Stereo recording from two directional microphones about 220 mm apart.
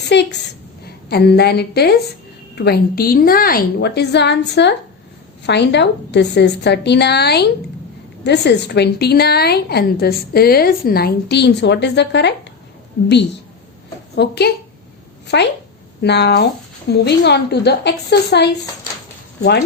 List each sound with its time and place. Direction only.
0.0 s a woman's voice: 50° left (ahead or behind)
14.2 s speech: 45° left (ahead or behind)